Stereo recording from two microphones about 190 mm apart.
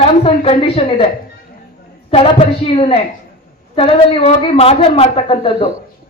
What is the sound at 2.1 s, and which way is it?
A woman's voice, 30° left (ahead or behind).